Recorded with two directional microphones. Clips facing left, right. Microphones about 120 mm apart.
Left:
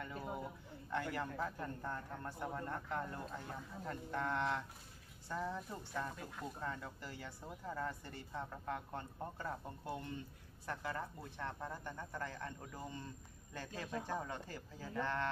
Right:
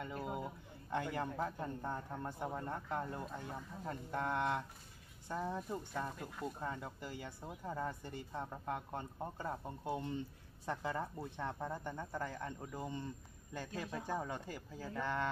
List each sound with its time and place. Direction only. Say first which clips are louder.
0.0 s a sound: right 2 dB; 15° right (ahead or behind)
0.8 s a man's voice: right 2 dB; 20° right (ahead or behind)
6.1 s speech: right 3 dB; centre (ahead or behind)
6.6 s a man's voice: right 2 dB; 15° right (ahead or behind)